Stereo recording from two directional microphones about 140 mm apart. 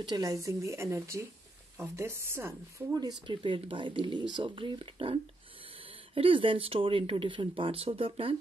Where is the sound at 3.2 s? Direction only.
40° right (ahead or behind).